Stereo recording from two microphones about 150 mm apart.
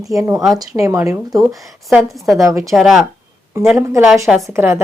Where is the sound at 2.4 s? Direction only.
20° right (ahead or behind).